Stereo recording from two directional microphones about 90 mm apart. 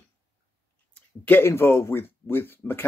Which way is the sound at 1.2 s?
25° left (ahead or behind).